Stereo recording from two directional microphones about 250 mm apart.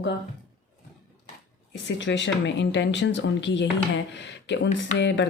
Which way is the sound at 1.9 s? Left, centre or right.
Left.